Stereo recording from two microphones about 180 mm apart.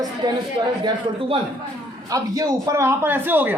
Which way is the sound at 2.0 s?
20° right (ahead or behind).